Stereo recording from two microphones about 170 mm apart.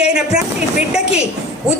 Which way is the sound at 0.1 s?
5° right (ahead or behind).